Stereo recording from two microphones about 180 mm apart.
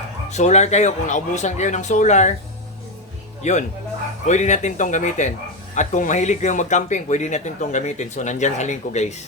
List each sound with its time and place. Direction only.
0.3 s speech: 40° left (ahead or behind)
3.4 s speech: 40° left (ahead or behind)